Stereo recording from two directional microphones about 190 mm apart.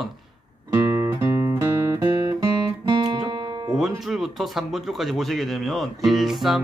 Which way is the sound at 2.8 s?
25° right (ahead or behind).